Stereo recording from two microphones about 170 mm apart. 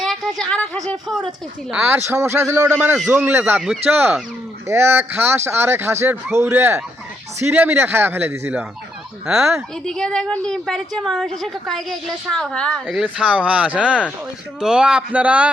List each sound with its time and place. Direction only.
0.0 s a woman's voice: centre (ahead or behind)
1.7 s a woman's voice: 10° right (ahead or behind)
9.8 s a woman's voice: 5° left (ahead or behind)